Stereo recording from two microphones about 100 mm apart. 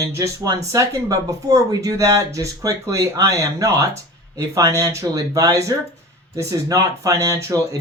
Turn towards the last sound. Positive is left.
turn(degrees=-30)  # may be behind; listen again after turning